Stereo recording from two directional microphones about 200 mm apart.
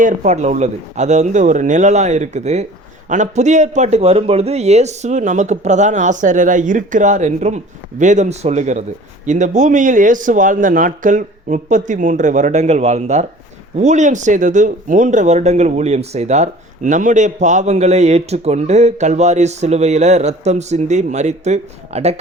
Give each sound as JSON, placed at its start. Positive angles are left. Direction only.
{"t": 0.0, "sound": "speech", "side_deg": -35}